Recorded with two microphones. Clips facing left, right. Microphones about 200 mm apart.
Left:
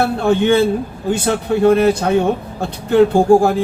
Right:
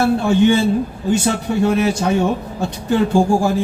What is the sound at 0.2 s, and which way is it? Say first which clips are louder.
Speech: left 1 dB; 55° left (ahead or behind).